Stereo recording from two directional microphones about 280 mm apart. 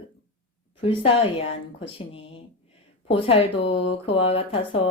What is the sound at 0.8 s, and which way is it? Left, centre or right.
Speech, centre.